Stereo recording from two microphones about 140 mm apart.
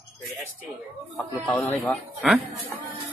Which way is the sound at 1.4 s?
5° left (ahead or behind).